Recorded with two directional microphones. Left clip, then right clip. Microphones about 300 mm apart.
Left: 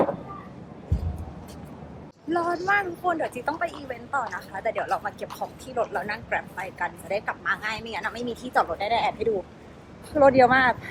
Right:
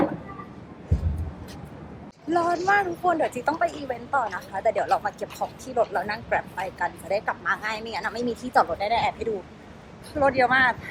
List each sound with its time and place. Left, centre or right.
2.3 s a woman's voice: centre